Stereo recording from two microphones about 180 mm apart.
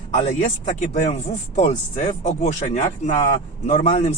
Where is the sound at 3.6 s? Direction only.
40° left (ahead or behind).